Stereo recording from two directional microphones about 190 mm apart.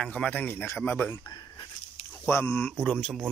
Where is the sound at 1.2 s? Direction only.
25° left (ahead or behind).